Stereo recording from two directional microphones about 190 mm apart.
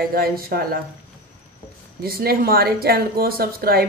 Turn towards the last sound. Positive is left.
turn(degrees=-55)  # may be behind; listen again after turning